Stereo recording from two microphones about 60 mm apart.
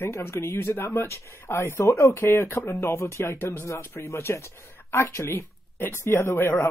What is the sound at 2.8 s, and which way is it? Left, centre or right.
Speech, left.